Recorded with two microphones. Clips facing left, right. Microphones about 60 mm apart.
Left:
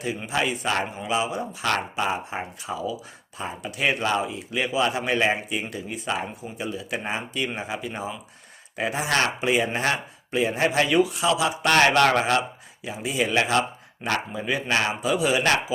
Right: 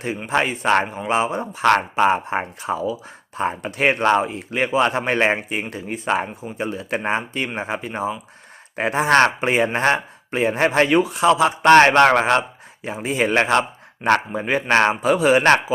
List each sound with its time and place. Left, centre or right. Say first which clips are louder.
0.3 s speech: right 7 dB; right